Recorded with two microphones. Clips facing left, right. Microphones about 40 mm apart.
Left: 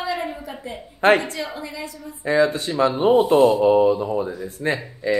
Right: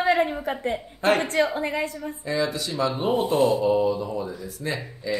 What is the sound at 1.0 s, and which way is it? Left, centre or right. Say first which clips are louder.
Speech: left 6 dB; left.